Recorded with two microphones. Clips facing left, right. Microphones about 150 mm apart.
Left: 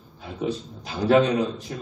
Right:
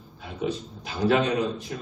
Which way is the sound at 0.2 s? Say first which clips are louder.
Left 1 dB; 40° left (ahead or behind).